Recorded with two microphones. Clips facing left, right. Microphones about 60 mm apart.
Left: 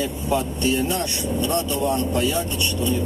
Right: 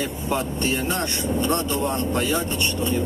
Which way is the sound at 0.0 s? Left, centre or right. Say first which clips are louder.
Left 2 dB; right.